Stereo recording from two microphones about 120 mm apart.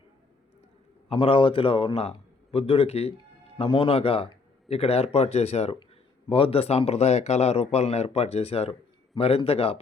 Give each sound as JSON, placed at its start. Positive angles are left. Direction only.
{"t": 1.1, "sound": "a man's voice", "side_deg": 45}
{"t": 3.6, "sound": "speech", "side_deg": 50}
{"t": 6.2, "sound": "speech", "side_deg": 50}